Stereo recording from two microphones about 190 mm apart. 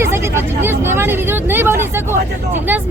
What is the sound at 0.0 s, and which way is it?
Speech, 15° right (ahead or behind).